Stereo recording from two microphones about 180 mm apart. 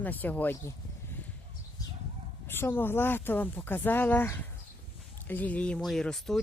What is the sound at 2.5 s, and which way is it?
Speech, 10° left (ahead or behind).